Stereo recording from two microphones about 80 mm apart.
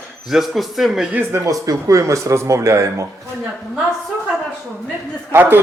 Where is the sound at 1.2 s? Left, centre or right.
Right.